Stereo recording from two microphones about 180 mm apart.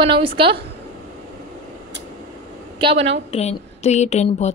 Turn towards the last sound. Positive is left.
turn(degrees=40)  # may be behind; listen again after turning